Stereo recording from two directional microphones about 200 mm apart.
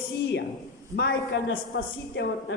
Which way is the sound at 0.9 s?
55° left (ahead or behind).